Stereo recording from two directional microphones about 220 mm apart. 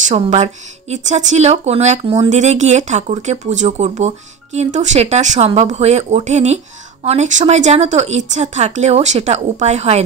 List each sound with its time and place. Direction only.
0.1 s speech: 30° right (ahead or behind)